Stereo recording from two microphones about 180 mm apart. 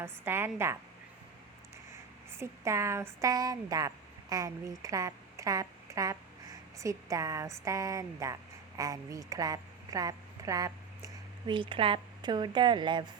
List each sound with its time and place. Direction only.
0.0 s a woman's voice: 15° right (ahead or behind)
2.4 s speech: 15° right (ahead or behind)